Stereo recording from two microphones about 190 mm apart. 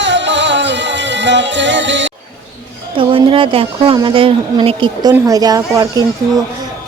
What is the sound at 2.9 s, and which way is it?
Speech, 30° right (ahead or behind).